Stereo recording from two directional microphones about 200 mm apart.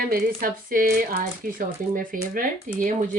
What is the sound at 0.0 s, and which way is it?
Speech, 50° right (ahead or behind).